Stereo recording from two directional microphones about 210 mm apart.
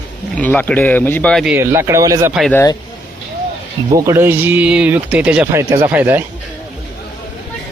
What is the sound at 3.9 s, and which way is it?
Speech, 15° right (ahead or behind).